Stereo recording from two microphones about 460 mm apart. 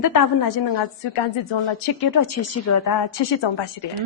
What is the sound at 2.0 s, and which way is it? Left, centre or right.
Speech, left.